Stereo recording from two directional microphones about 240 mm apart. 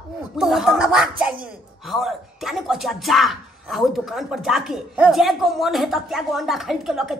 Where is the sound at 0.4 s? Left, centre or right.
Centre.